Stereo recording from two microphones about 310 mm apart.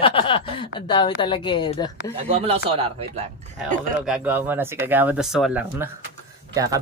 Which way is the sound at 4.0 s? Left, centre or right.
Centre.